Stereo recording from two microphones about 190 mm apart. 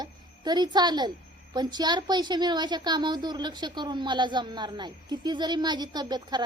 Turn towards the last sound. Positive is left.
turn(degrees=-20)  # may be behind; listen again after turning